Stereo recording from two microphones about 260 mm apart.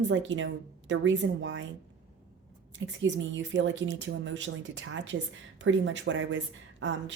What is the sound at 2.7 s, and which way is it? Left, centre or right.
Speech, right.